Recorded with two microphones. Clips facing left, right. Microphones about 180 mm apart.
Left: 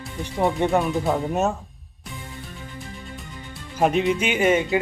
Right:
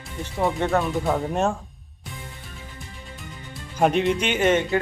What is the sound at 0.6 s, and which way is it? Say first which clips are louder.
Speech: left 2 dB; 15° left (ahead or behind).